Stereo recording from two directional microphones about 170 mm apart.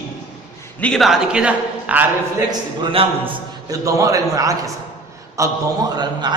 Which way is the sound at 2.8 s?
30° right (ahead or behind).